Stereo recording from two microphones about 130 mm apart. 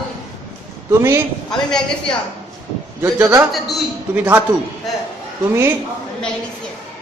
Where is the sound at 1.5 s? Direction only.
5° left (ahead or behind).